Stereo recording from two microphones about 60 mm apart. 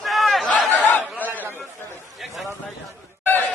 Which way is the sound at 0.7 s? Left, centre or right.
Left.